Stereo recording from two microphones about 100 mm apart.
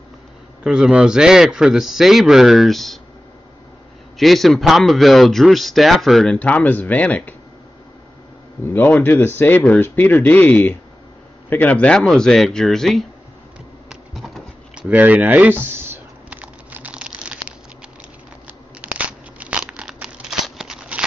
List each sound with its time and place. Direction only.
0.7 s a man's voice: 10° right (ahead or behind)
4.2 s a man's voice: centre (ahead or behind)
6.3 s speech: 15° left (ahead or behind)
8.6 s a man's voice: 20° left (ahead or behind); by 13.0 s centre (ahead or behind)
13.8 s bee: centre (ahead or behind)
14.8 s a sound: 15° right (ahead or behind)
18.8 s crunch: 15° right (ahead or behind)